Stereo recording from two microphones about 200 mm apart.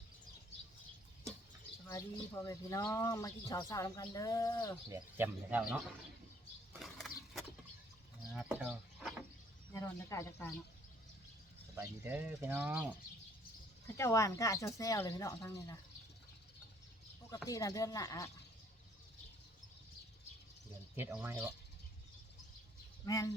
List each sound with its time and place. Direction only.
1.9 s speech: 15° left (ahead or behind)
4.9 s speech: 10° right (ahead or behind)
6.7 s a sound: centre (ahead or behind)
8.3 s bird: 5° right (ahead or behind)
9.7 s speech: 15° left (ahead or behind)
11.8 s speech: 10° right (ahead or behind)
13.8 s speech: 15° left (ahead or behind)
17.2 s speech: 15° left (ahead or behind)
20.9 s speech: 10° right (ahead or behind)
23.0 s speech: 15° left (ahead or behind)